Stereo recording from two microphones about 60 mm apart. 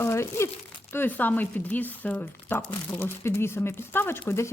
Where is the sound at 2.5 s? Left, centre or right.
Left.